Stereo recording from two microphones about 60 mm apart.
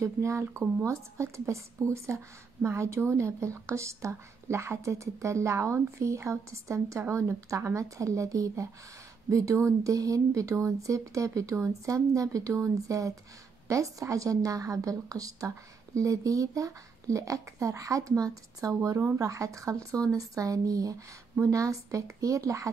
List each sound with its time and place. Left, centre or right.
0.0 s a woman's voice: right
21.4 s speech: right